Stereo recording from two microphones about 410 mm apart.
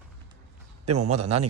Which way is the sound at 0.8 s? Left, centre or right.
Right.